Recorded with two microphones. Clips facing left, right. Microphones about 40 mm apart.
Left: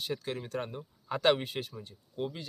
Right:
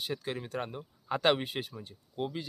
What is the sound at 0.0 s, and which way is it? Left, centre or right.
Speech, centre.